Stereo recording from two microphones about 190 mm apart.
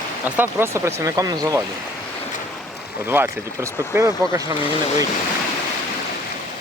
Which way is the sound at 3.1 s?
10° right (ahead or behind).